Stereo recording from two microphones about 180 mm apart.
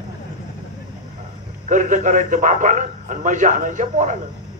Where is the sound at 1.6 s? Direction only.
45° right (ahead or behind).